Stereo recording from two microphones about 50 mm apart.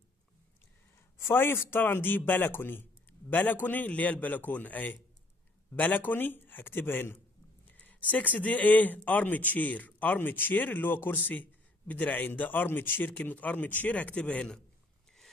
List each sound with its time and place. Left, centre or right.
0.9 s a man's voice: left
7.6 s a man's voice: left